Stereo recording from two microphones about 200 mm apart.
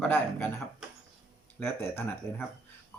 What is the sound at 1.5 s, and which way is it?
Speech, 10° left (ahead or behind).